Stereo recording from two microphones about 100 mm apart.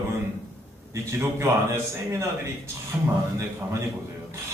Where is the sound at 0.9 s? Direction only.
30° right (ahead or behind).